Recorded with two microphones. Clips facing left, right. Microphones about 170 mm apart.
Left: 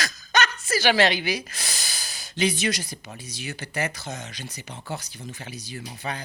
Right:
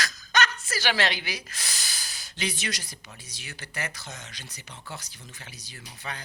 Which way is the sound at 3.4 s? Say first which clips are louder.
Left 7 dB; 15° left (ahead or behind).